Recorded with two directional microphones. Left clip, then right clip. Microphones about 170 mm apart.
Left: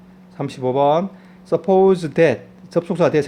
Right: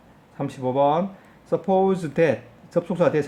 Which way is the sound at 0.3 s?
45° left (ahead or behind).